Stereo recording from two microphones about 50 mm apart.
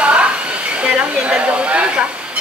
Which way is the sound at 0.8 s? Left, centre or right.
Right.